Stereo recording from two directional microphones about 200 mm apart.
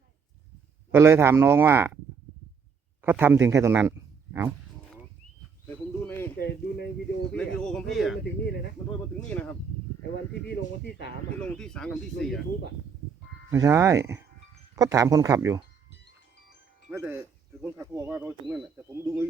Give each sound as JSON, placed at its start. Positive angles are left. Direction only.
{"t": 0.9, "sound": "speech", "side_deg": -15}
{"t": 3.0, "sound": "a man's voice", "side_deg": -10}
{"t": 6.0, "sound": "a sound", "side_deg": 10}
{"t": 6.4, "sound": "speech", "side_deg": 55}
{"t": 7.3, "sound": "speech", "side_deg": 5}
{"t": 10.5, "sound": "speech", "side_deg": 55}
{"t": 11.3, "sound": "speech", "side_deg": 5}
{"t": 13.5, "sound": "speech", "side_deg": -15}
{"t": 16.9, "sound": "speech", "side_deg": -10}
{"t": 18.9, "sound": "speech", "side_deg": -15}